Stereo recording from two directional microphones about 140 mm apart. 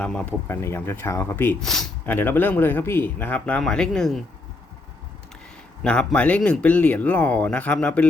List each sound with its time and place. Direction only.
0.0 s speech: 10° left (ahead or behind)
1.6 s speech: centre (ahead or behind)
2.0 s speech: 15° left (ahead or behind)
5.8 s speech: 5° left (ahead or behind)